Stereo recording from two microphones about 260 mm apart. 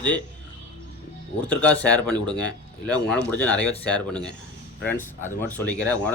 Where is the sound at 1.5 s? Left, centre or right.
Centre.